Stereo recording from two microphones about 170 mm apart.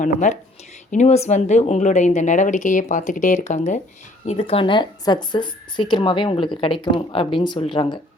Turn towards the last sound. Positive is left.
turn(degrees=30)  # may be behind; listen again after turning